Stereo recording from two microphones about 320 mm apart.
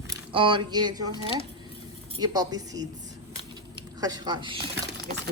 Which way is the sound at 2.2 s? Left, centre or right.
Centre.